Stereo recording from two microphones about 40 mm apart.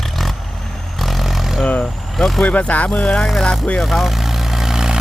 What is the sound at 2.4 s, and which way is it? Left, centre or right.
Speech, left.